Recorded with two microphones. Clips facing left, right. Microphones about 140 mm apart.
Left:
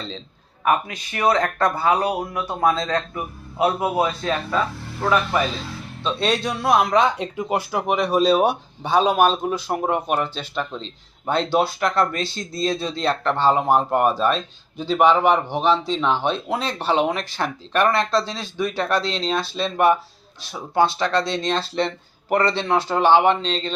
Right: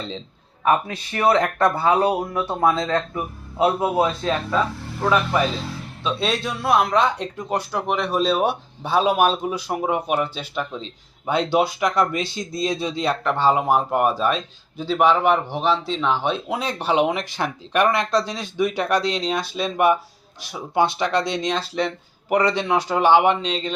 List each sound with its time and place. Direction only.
0.6 s speech: 30° right (ahead or behind)
3.9 s speech: 15° right (ahead or behind)
4.3 s speech: 5° right (ahead or behind)